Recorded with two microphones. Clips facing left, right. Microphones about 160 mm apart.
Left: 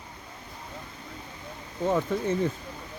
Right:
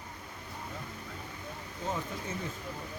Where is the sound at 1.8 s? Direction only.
70° left (ahead or behind).